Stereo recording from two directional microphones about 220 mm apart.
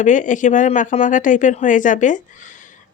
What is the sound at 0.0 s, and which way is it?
Speech, 35° left (ahead or behind).